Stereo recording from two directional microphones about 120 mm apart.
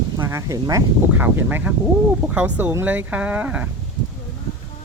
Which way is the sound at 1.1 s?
15° right (ahead or behind).